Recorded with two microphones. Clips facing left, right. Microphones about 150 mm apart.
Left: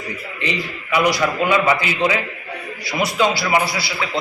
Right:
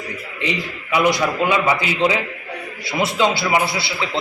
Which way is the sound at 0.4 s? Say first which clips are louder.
Right 1 dB; 20° right (ahead or behind).